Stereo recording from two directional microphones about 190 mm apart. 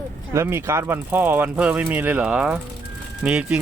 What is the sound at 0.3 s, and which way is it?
Speech, 15° right (ahead or behind).